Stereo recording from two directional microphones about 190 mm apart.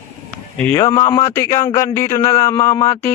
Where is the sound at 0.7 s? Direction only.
15° left (ahead or behind).